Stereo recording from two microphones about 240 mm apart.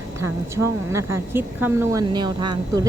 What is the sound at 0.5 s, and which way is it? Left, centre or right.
A woman's voice, centre.